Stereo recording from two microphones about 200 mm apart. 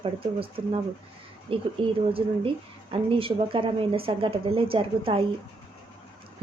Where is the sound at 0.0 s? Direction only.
25° right (ahead or behind).